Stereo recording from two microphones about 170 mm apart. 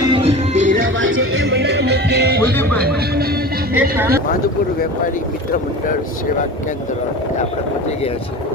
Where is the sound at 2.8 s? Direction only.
65° right (ahead or behind).